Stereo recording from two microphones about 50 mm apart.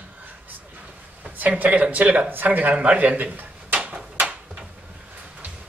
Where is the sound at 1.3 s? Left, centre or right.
Right.